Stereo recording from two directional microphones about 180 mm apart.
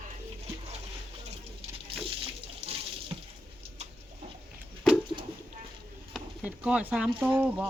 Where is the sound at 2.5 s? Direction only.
35° right (ahead or behind).